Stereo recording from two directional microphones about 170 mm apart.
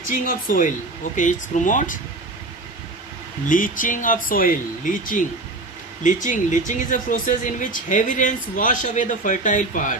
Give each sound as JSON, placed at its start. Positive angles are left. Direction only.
{"t": 0.1, "sound": "speech", "side_deg": 55}
{"t": 3.5, "sound": "speech", "side_deg": 50}